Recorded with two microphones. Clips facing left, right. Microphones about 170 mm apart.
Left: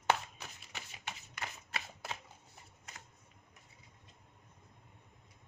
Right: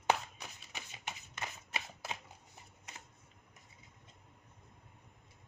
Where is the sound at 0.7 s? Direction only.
15° right (ahead or behind).